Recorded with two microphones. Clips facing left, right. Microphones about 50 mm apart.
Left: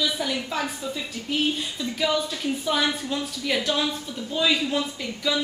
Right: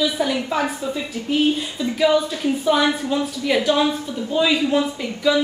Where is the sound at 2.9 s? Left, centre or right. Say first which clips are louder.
Right 7 dB; right.